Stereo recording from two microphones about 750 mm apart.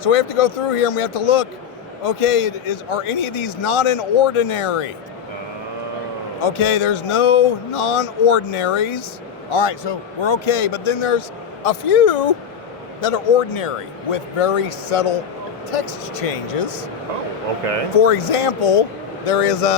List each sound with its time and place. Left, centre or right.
0.0 s speech: left
6.4 s speech: left
18.0 s speech: left